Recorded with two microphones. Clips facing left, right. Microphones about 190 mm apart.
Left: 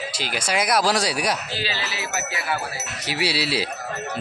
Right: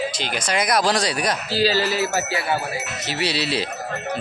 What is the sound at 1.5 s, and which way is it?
Speech, 35° right (ahead or behind).